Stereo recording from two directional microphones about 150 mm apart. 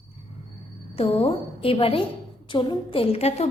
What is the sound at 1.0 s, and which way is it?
A woman's voice, 40° left (ahead or behind).